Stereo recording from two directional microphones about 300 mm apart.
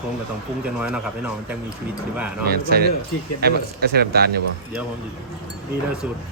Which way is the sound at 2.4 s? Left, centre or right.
Right.